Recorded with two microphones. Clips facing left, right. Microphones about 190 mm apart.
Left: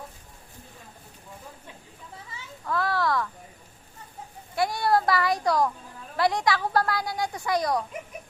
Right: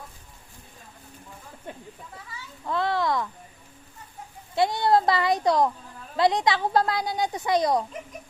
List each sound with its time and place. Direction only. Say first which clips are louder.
1.7 s a sound: right 8 dB; 50° right (ahead or behind)
2.6 s a child's voice: right 1 dB; 20° right (ahead or behind)
4.5 s speech: right 3 dB; 20° right (ahead or behind)